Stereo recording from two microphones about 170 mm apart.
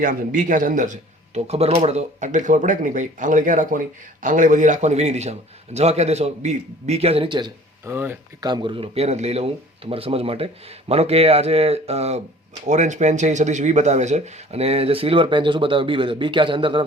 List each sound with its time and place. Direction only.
0.0 s speech: 50° right (ahead or behind); by 7.5 s 30° right (ahead or behind)
7.9 s speech: 10° right (ahead or behind)
8.4 s speech: 25° right (ahead or behind)